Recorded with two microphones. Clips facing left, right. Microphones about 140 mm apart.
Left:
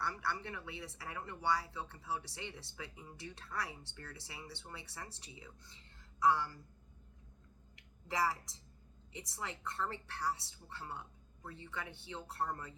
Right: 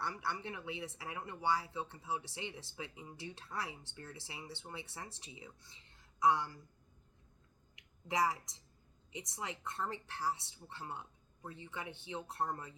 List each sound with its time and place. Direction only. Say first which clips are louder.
0.0 s speech: even; 20° right (ahead or behind)
7.8 s a sound: right 2 dB; 15° right (ahead or behind)
9.1 s speech: right 1 dB; 20° right (ahead or behind)